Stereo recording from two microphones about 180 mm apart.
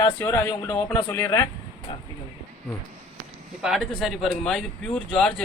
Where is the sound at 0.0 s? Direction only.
15° left (ahead or behind).